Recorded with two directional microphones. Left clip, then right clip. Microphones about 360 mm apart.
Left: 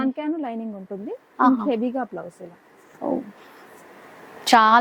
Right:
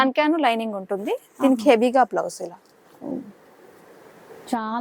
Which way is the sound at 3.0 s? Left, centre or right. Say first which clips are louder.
Left 7 dB; centre.